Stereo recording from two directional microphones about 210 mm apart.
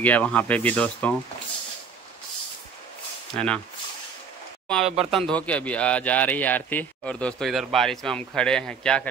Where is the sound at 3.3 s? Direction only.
5° left (ahead or behind).